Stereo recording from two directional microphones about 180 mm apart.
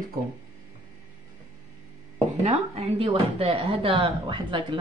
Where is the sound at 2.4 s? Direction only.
35° right (ahead or behind).